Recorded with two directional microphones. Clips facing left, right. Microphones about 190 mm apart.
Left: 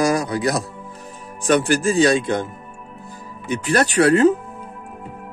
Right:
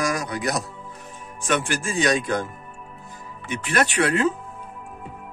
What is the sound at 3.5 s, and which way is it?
Speech, 35° left (ahead or behind).